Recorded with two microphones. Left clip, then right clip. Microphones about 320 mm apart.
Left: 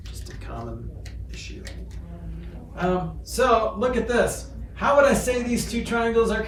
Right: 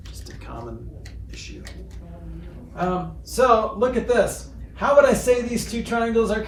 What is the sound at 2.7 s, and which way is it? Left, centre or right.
Speech, right.